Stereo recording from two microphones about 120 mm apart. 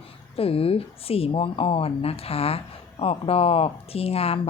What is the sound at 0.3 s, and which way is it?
A woman's voice, 55° left (ahead or behind).